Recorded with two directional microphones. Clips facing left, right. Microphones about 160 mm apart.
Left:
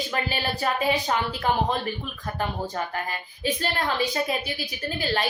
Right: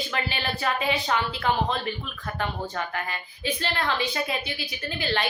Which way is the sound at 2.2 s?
35° left (ahead or behind).